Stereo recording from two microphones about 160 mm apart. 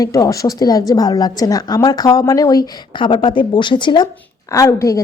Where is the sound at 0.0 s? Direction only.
20° left (ahead or behind).